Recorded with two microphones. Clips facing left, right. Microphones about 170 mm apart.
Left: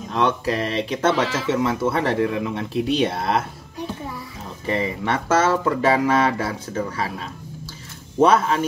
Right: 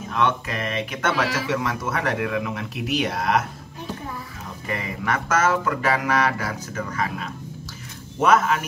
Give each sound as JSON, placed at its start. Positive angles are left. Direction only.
{"t": 0.1, "sound": "speech", "side_deg": 30}
{"t": 4.6, "sound": "speech", "side_deg": 30}